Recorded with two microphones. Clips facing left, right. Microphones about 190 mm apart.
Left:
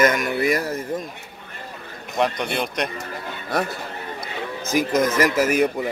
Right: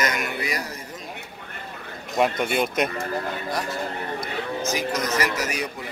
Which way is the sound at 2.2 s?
5° right (ahead or behind).